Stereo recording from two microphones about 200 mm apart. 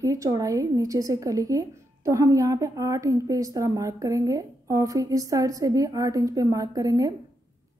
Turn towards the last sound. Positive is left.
turn(degrees=-15)  # may be behind; listen again after turning